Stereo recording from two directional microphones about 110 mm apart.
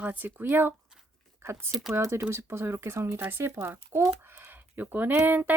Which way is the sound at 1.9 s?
25° right (ahead or behind).